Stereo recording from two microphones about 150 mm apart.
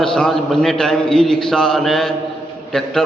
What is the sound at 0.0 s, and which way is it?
A man's voice, 5° left (ahead or behind).